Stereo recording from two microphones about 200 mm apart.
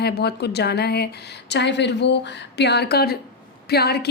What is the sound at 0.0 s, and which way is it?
A woman's voice, 55° left (ahead or behind).